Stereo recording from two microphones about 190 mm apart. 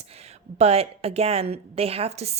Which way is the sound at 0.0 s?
35° right (ahead or behind).